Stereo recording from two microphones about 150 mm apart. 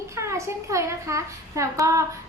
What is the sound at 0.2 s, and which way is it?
A child's voice, 20° right (ahead or behind).